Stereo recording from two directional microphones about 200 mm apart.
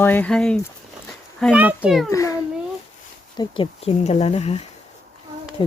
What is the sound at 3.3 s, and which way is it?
Speech, 25° left (ahead or behind).